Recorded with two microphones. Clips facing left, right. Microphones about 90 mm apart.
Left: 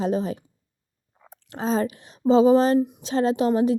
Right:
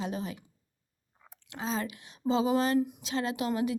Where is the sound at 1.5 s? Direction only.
40° left (ahead or behind).